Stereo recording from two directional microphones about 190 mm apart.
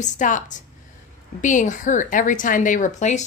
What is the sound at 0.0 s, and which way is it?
A woman's voice, 40° left (ahead or behind).